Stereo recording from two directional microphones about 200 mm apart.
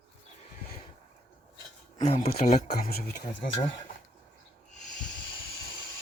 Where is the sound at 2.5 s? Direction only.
45° left (ahead or behind).